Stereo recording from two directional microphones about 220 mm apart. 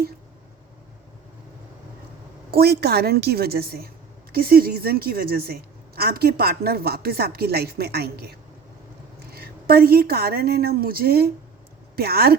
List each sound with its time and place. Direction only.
2.5 s a woman's voice: 45° right (ahead or behind)